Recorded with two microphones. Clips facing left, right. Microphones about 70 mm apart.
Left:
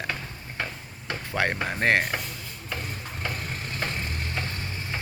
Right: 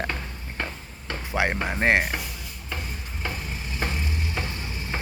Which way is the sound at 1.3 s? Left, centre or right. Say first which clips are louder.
Right 2 dB; centre.